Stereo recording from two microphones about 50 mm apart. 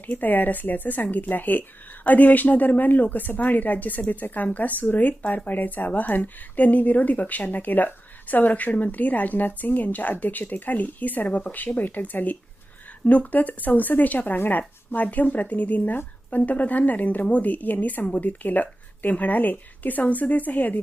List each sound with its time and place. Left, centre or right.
0.1 s a woman's voice: left